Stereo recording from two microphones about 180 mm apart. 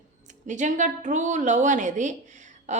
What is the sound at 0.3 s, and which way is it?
A woman's voice, 40° right (ahead or behind).